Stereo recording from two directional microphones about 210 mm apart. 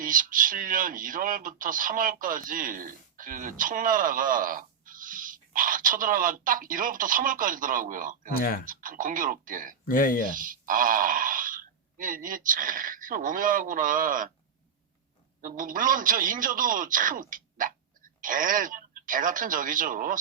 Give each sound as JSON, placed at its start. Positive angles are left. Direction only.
{"t": 0.0, "sound": "speech", "side_deg": -40}
{"t": 8.4, "sound": "speech", "side_deg": 40}
{"t": 8.6, "sound": "speech", "side_deg": -40}
{"t": 9.8, "sound": "speech", "side_deg": 40}
{"t": 10.3, "sound": "speech", "side_deg": -40}
{"t": 15.4, "sound": "speech", "side_deg": -40}